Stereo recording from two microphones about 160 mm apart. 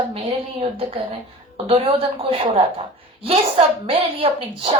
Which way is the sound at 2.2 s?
35° right (ahead or behind).